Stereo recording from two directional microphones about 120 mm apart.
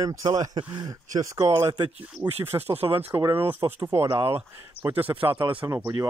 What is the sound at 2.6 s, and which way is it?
Speech, 55° right (ahead or behind).